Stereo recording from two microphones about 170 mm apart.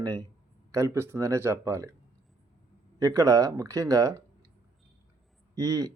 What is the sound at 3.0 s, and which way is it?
Speech, 20° right (ahead or behind).